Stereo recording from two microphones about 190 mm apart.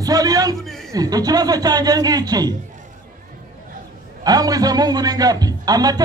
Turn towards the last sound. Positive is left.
turn(degrees=-20)  # may be behind; listen again after turning